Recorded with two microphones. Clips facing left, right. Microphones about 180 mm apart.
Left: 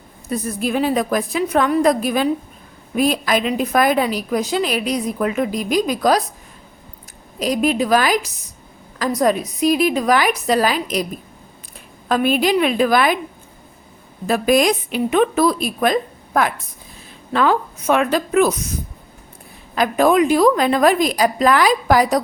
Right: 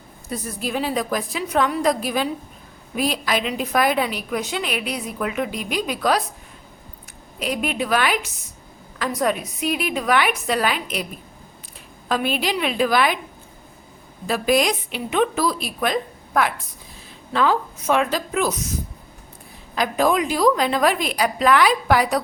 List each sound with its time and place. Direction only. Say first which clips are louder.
0.3 s a woman's voice: left 6 dB; 55° left (ahead or behind)
7.3 s a woman's voice: left 6 dB; 40° left (ahead or behind)
12.0 s a woman's voice: left 6 dB; 50° left (ahead or behind)
14.3 s a woman's voice: left 4 dB; 45° left (ahead or behind)
17.3 s a woman's voice: left 3 dB; 55° left (ahead or behind)
19.7 s a woman's voice: left 5 dB; 55° left (ahead or behind)